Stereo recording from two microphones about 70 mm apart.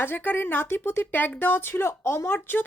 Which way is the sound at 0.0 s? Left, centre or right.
Left.